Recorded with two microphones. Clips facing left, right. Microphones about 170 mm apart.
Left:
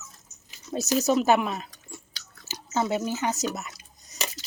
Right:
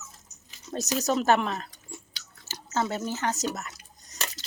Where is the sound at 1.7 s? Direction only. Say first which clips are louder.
Even; 25° right (ahead or behind).